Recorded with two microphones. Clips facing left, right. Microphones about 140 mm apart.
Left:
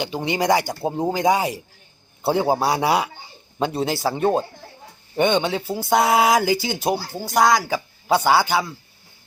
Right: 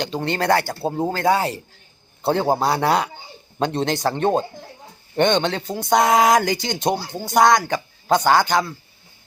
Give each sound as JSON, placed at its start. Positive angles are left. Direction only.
{"t": 0.0, "sound": "speech", "side_deg": 10}